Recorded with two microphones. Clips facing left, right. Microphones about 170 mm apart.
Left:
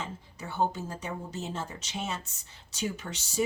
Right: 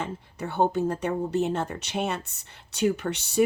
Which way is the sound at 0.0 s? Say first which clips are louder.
Right 7 dB; 60° right (ahead or behind).